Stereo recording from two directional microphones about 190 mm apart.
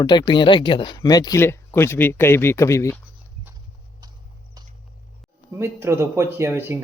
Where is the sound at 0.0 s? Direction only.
25° left (ahead or behind).